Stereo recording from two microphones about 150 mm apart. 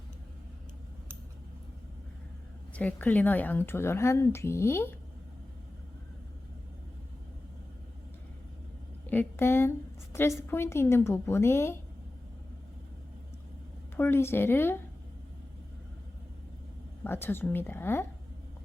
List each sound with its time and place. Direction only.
2.7 s a woman's voice: 10° left (ahead or behind)
9.0 s a woman's voice: 15° left (ahead or behind)
13.9 s a woman's voice: 15° left (ahead or behind)
17.0 s a woman's voice: 15° left (ahead or behind)